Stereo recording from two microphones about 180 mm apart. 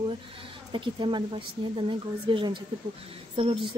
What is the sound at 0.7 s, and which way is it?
Speech, 25° right (ahead or behind).